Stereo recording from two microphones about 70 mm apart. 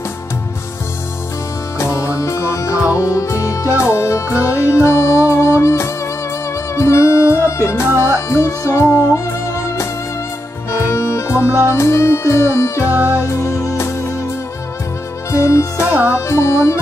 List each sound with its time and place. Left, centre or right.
1.8 s music: left
10.7 s music: left
12.9 s music: right
13.4 s music: left
15.3 s music: left